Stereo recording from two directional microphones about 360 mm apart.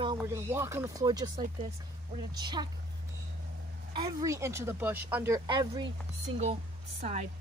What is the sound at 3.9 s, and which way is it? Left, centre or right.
Speech, centre.